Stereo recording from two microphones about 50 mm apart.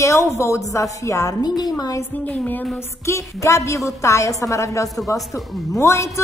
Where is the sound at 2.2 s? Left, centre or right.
Left.